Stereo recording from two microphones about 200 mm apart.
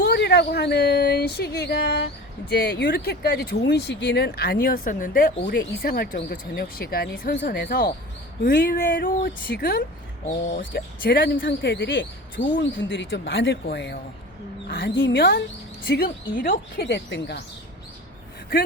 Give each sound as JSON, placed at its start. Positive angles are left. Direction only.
{"t": 0.0, "sound": "speech", "side_deg": 55}
{"t": 12.4, "sound": "speech", "side_deg": 30}
{"t": 12.9, "sound": "speech", "side_deg": 65}
{"t": 16.0, "sound": "speech", "side_deg": 45}